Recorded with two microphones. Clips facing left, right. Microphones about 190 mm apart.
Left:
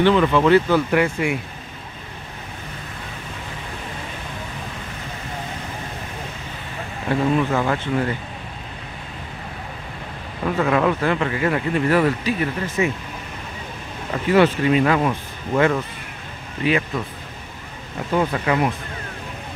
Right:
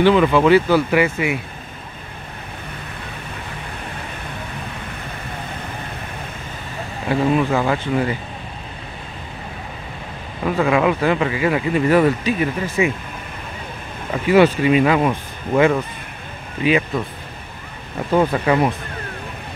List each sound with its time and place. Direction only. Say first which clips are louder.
0.0 s speech: right 2 dB; 10° right (ahead or behind)
7.1 s speech: right 2 dB; 10° right (ahead or behind)
10.4 s speech: right 2 dB; 10° right (ahead or behind)
14.2 s speech: right 3 dB; 10° right (ahead or behind)
18.4 s speech: right 3 dB; 30° right (ahead or behind)